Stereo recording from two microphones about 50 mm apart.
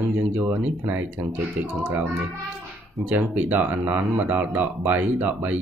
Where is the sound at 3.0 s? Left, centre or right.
Right.